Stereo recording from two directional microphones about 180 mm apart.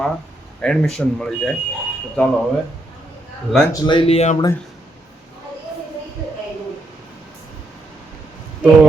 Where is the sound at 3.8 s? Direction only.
30° left (ahead or behind).